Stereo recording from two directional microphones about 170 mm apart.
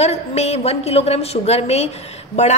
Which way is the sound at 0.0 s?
40° left (ahead or behind).